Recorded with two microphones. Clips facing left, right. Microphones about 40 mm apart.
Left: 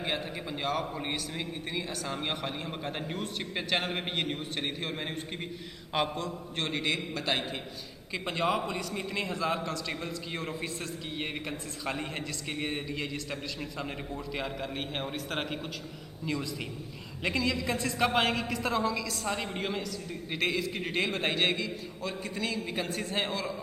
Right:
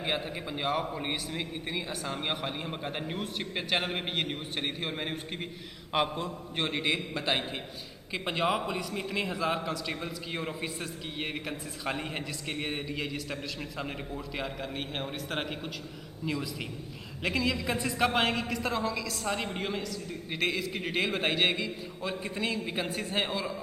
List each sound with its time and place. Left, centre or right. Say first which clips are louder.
0.0 s a man's voice: right 1 dB; centre
6.1 s a man's voice: right 1 dB; centre